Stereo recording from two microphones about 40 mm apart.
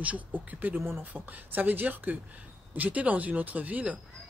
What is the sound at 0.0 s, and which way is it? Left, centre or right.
A woman's voice, right.